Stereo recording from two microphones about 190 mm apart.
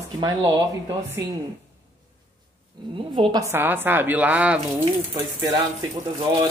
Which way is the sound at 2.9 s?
25° right (ahead or behind).